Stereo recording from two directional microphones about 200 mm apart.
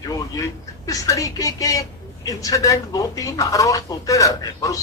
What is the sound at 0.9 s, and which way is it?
Speech, 15° left (ahead or behind).